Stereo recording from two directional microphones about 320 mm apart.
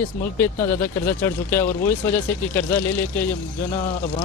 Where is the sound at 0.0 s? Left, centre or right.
Centre.